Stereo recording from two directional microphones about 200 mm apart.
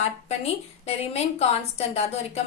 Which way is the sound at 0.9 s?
30° left (ahead or behind).